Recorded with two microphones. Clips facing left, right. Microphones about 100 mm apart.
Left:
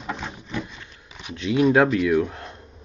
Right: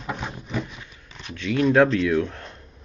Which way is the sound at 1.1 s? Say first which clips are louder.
Left 2 dB; 15° left (ahead or behind).